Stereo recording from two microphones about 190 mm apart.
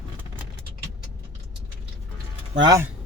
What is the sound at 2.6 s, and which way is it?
Speech, 20° right (ahead or behind).